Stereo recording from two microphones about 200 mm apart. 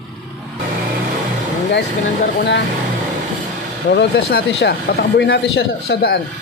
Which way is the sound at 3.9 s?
55° left (ahead or behind).